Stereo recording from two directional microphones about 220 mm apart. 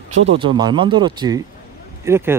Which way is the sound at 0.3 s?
20° right (ahead or behind).